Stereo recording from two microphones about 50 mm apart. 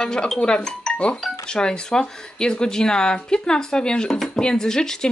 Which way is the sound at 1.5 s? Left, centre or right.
Centre.